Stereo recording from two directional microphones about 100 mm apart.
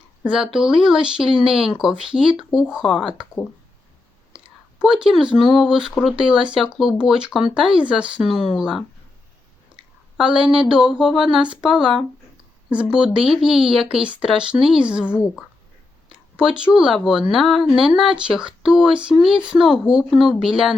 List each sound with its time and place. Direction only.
0.2 s speech: 5° right (ahead or behind)
2.8 s speech: 5° left (ahead or behind)
4.8 s speech: 5° right (ahead or behind)
10.2 s speech: 5° right (ahead or behind)
15.1 s speech: 25° left (ahead or behind)
16.4 s speech: 10° right (ahead or behind)